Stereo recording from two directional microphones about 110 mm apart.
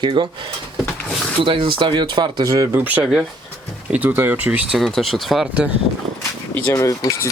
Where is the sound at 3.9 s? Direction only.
15° right (ahead or behind).